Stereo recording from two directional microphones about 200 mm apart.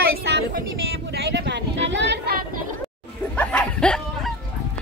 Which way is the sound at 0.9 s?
55° right (ahead or behind).